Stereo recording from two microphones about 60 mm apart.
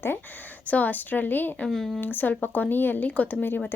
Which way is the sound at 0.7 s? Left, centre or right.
Left.